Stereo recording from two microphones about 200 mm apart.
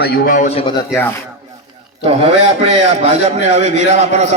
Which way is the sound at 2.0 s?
30° right (ahead or behind).